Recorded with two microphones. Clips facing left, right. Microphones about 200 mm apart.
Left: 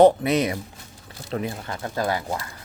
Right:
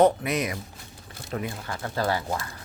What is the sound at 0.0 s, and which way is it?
Speech, 30° left (ahead or behind).